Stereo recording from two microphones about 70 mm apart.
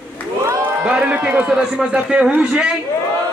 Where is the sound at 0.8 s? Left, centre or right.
Centre.